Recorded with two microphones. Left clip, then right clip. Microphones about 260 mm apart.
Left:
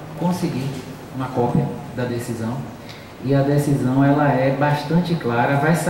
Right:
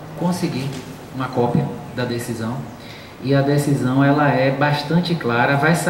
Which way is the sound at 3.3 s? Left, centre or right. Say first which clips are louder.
Right 1 dB; centre.